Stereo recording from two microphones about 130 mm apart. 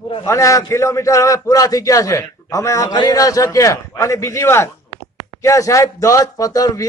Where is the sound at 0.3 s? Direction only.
25° left (ahead or behind).